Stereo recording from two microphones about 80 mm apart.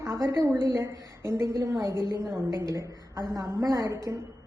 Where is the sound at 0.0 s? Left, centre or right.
Right.